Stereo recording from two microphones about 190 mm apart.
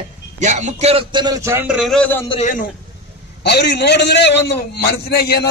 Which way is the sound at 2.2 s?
35° left (ahead or behind).